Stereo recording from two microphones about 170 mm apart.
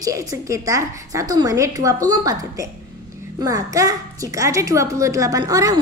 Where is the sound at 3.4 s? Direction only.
20° right (ahead or behind).